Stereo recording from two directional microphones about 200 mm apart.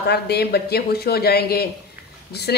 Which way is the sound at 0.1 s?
55° left (ahead or behind).